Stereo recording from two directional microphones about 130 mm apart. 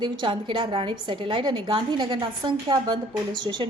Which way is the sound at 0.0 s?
35° right (ahead or behind).